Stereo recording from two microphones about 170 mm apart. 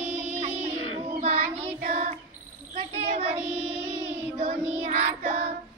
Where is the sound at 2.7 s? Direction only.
40° right (ahead or behind).